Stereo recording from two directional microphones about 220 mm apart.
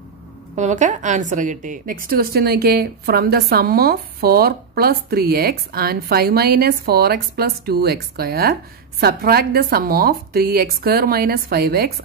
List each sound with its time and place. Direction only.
0.6 s a woman's voice: 35° right (ahead or behind)